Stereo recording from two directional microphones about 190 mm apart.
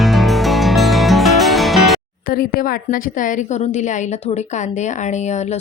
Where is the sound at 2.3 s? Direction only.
50° left (ahead or behind).